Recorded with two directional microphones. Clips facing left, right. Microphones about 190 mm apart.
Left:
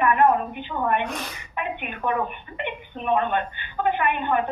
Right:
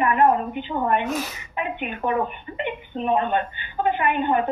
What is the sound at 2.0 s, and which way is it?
Speech, 25° right (ahead or behind).